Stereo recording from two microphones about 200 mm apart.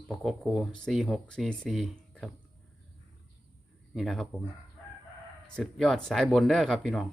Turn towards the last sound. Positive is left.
turn(degrees=0)  # may be behind; listen again after turning